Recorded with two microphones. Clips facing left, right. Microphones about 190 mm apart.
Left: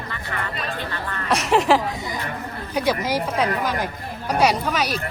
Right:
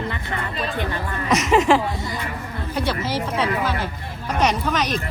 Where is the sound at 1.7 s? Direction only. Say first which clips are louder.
Right 1 dB; 5° left (ahead or behind).